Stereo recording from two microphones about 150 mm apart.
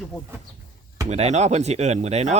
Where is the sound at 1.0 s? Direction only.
50° right (ahead or behind).